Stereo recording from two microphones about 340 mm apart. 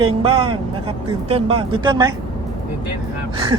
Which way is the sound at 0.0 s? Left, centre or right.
Centre.